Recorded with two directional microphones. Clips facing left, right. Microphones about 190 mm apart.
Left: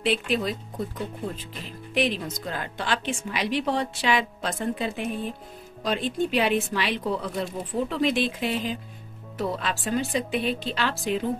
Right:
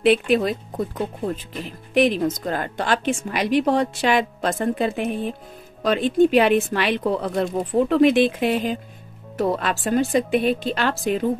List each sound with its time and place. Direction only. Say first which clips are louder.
0.0 s a woman's voice: right 8 dB; 55° right (ahead or behind)